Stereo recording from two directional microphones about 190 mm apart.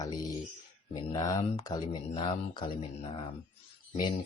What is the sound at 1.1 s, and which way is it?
Speech, 20° left (ahead or behind).